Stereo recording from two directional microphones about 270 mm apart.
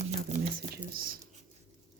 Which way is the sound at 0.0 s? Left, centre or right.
Right.